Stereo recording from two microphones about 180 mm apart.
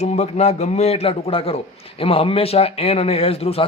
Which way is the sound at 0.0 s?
35° left (ahead or behind).